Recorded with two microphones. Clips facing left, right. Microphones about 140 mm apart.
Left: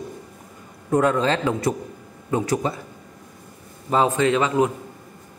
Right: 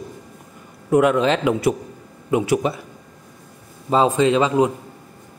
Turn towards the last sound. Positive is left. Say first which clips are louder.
# right 3 dB
turn(degrees=-20)  # may be behind; listen again after turning